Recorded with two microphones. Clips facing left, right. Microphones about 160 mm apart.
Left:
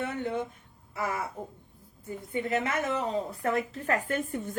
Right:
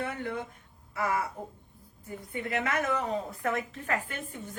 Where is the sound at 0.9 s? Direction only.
25° left (ahead or behind).